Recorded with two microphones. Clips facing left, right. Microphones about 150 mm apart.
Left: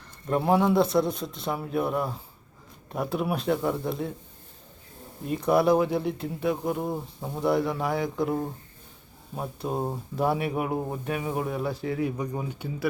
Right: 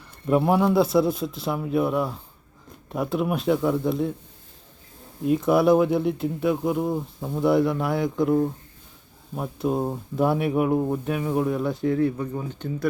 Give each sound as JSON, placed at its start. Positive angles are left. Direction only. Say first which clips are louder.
{"t": 0.3, "sound": "speech", "louder": "right 3 dB", "side_deg": -5}
{"t": 5.2, "sound": "speech", "louder": "right 3 dB", "side_deg": 0}
{"t": 12.0, "sound": "speech", "louder": "right 4 dB", "side_deg": 15}